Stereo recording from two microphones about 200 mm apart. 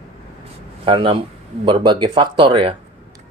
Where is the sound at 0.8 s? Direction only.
25° right (ahead or behind).